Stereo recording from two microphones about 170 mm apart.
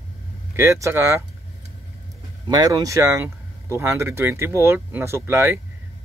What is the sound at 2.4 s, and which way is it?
Speech, 25° right (ahead or behind).